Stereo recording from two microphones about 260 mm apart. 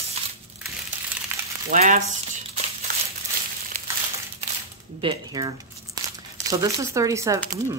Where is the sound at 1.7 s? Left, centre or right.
Right.